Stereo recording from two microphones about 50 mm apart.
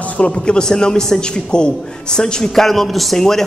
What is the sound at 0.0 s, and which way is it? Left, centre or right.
A man's voice, left.